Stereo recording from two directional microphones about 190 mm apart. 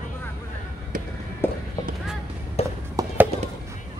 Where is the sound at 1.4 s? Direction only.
10° left (ahead or behind).